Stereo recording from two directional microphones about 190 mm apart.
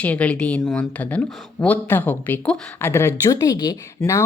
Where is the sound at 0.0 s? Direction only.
5° left (ahead or behind).